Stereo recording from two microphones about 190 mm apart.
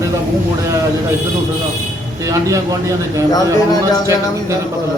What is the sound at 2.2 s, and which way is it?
Speech, 20° right (ahead or behind).